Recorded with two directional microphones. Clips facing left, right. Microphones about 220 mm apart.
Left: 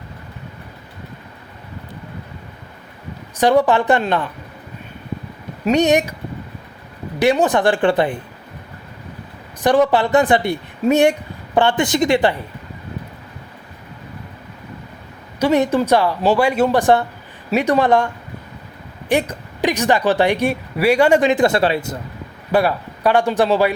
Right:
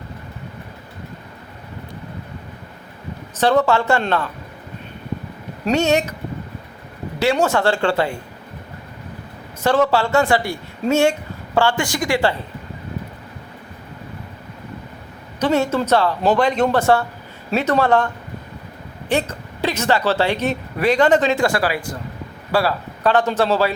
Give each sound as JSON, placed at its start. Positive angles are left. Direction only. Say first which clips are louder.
{"t": 3.3, "sound": "a woman's voice", "louder": "left 2 dB", "side_deg": 15}
{"t": 5.6, "sound": "a woman's voice", "louder": "left 3 dB", "side_deg": 15}
{"t": 7.4, "sound": "a woman's voice", "louder": "left 2 dB", "side_deg": 15}
{"t": 9.6, "sound": "speech", "louder": "left 2 dB", "side_deg": 15}
{"t": 15.4, "sound": "a woman's voice", "louder": "left 3 dB", "side_deg": 15}